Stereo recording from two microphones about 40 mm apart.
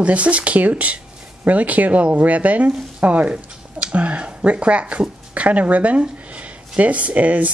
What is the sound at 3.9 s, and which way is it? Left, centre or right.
Speech, right.